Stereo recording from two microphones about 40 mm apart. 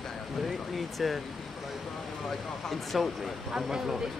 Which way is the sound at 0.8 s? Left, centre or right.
Centre.